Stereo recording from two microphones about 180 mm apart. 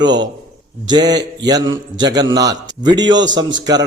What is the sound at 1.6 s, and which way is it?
Speech, 90° right.